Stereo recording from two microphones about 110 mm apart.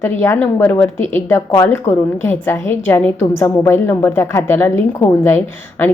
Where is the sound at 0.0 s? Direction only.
20° left (ahead or behind).